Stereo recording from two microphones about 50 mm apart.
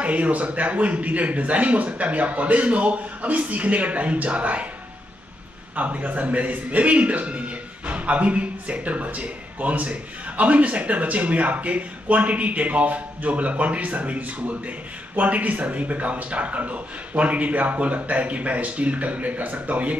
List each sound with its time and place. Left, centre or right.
0.0 s a man's voice: right
5.8 s a man's voice: right